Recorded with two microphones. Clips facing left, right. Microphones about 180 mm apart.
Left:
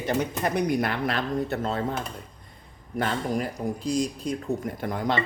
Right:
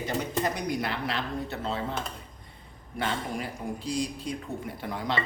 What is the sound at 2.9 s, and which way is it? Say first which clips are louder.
Speech: left 5 dB; 45° left (ahead or behind).